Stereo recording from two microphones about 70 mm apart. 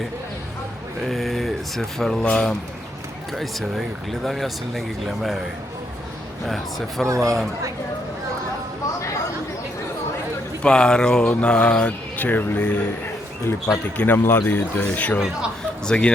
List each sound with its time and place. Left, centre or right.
1.0 s speech: centre
3.3 s speech: centre
6.4 s speech: centre
10.6 s speech: centre
13.9 s speech: left
15.8 s speech: centre